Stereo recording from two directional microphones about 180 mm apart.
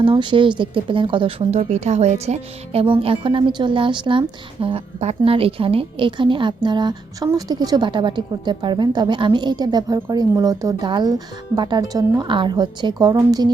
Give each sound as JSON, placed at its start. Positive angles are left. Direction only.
{"t": 0.0, "sound": "speech", "side_deg": -25}